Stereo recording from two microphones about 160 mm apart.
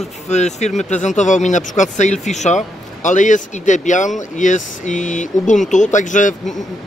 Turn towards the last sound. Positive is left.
turn(degrees=50)  # may be behind; listen again after turning